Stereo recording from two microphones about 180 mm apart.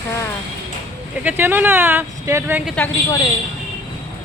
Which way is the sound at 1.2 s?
10° right (ahead or behind).